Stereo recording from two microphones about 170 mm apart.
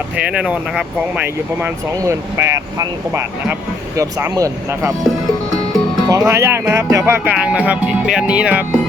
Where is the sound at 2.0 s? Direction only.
15° right (ahead or behind).